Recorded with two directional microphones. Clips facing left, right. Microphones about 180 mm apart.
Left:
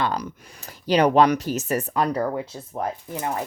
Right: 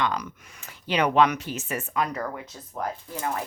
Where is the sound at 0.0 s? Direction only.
35° left (ahead or behind).